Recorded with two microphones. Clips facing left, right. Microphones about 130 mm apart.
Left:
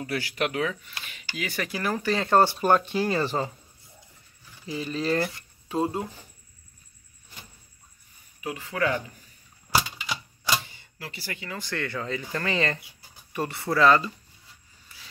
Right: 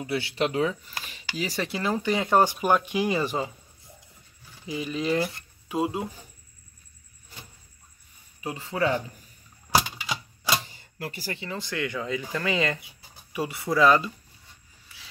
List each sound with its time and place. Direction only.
0.0 s speech: 25° right (ahead or behind); by 3.5 s 10° right (ahead or behind)
4.6 s speech: 15° right (ahead or behind)
8.4 s speech: 25° right (ahead or behind)
10.8 s music: 45° right (ahead or behind)
11.3 s speech: 20° right (ahead or behind)